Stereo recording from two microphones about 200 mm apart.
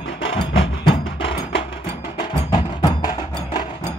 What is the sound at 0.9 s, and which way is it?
Music, 25° left (ahead or behind).